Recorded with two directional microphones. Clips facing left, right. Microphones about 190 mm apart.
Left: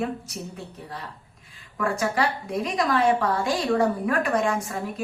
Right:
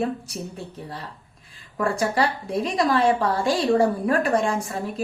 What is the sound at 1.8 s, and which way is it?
A woman's voice, 30° right (ahead or behind).